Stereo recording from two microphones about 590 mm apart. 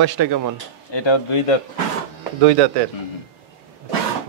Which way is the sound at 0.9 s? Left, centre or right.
Left.